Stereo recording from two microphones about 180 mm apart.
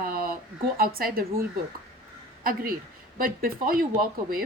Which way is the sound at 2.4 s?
50° right (ahead or behind).